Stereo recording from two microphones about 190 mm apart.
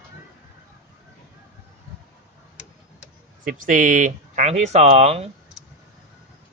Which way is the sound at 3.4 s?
45° right (ahead or behind).